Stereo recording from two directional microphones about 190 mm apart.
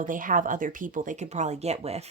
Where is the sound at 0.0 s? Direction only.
45° right (ahead or behind).